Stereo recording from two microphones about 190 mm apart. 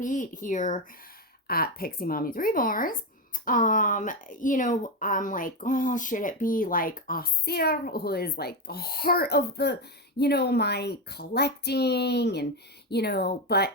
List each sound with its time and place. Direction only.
0.0 s speech: 40° left (ahead or behind)
1.5 s speech: 50° left (ahead or behind)